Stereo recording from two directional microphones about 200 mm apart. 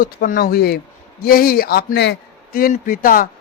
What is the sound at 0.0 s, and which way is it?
A man's voice, 50° left (ahead or behind).